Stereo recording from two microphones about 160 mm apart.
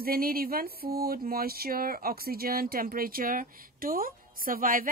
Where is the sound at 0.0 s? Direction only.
65° right (ahead or behind).